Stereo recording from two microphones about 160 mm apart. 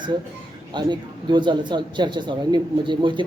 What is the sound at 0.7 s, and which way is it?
Speech, 30° right (ahead or behind).